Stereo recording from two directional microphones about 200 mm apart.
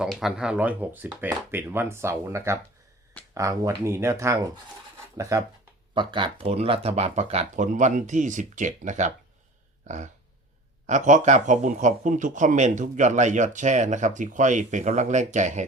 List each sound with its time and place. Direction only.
0.0 s speech: centre (ahead or behind); by 9.1 s 35° right (ahead or behind)
9.8 s a sound: 35° right (ahead or behind)
10.8 s speech: 35° right (ahead or behind)